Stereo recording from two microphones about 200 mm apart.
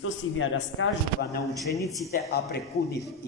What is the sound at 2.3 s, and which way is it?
Speech, 50° left (ahead or behind).